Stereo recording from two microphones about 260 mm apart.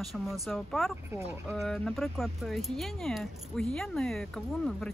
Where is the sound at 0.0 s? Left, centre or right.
Centre.